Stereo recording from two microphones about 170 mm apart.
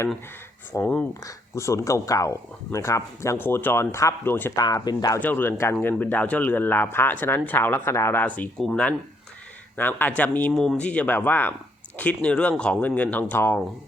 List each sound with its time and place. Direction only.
0.7 s speech: 10° left (ahead or behind)
4.6 s speech: 25° left (ahead or behind)
5.2 s speech: 10° left (ahead or behind)